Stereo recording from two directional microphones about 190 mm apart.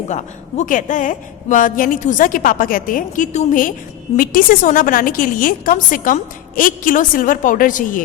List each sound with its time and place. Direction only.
0.1 s a woman's voice: 40° left (ahead or behind)